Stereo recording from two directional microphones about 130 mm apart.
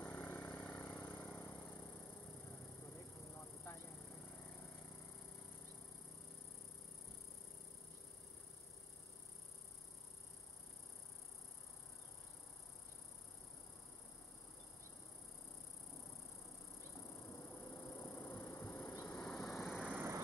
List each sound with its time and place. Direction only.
0.0 s a sound: 15° left (ahead or behind)
17.4 s vehicle: 20° left (ahead or behind)
19.0 s vehicle: 10° left (ahead or behind); by 20.1 s 10° right (ahead or behind)